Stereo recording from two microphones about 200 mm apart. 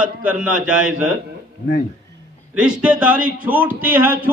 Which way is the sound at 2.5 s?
5° right (ahead or behind).